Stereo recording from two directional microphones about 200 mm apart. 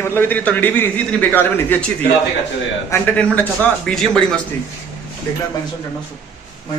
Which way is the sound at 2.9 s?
5° left (ahead or behind).